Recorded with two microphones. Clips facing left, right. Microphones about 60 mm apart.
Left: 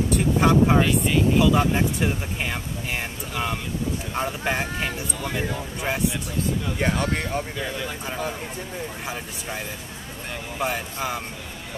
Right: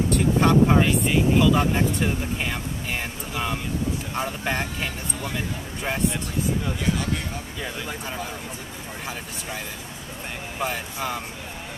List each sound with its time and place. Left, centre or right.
0.1 s speech: centre
6.8 s speech: left
10.6 s speech: centre